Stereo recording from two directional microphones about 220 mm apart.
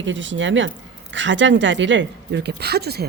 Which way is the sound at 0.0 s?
55° right (ahead or behind).